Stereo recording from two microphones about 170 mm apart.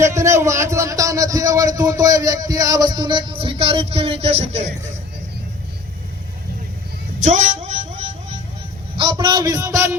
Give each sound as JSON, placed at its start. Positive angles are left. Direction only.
{"t": 0.0, "sound": "a man's voice", "side_deg": -15}
{"t": 7.3, "sound": "a sound", "side_deg": -45}
{"t": 9.0, "sound": "a man's voice", "side_deg": -25}